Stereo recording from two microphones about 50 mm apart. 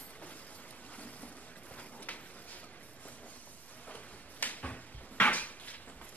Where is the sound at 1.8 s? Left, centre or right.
Left.